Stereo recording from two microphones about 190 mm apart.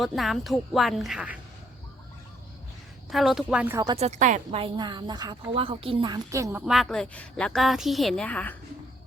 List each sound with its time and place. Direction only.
0.0 s a woman's voice: centre (ahead or behind)
3.1 s a woman's voice: centre (ahead or behind)
3.9 s a woman's voice: 35° right (ahead or behind); by 6.7 s 15° right (ahead or behind)
6.7 s a woman's voice: centre (ahead or behind)